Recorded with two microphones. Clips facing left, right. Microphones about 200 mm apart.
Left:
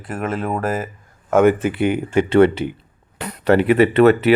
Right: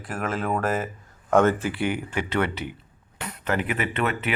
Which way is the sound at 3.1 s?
35° left (ahead or behind).